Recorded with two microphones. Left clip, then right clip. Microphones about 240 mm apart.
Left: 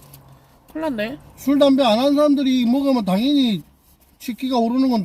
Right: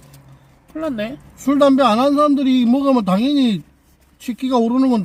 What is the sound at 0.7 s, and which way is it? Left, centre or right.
Speech, centre.